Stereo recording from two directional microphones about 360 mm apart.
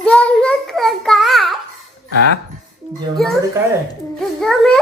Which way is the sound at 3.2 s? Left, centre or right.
Centre.